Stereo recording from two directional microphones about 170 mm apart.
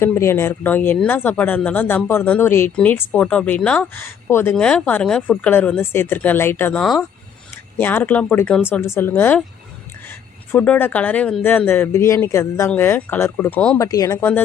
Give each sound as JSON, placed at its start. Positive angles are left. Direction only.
{"t": 0.0, "sound": "speech", "side_deg": 15}
{"t": 13.8, "sound": "speech", "side_deg": 20}